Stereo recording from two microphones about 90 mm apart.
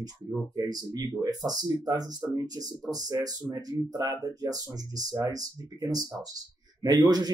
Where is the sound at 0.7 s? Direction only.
50° right (ahead or behind).